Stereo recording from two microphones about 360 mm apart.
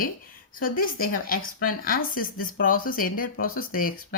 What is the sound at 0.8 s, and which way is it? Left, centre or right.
Speech, left.